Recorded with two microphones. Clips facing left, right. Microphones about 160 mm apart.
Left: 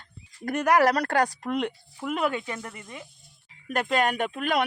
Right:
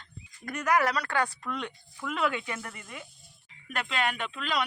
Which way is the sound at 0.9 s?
40° left (ahead or behind).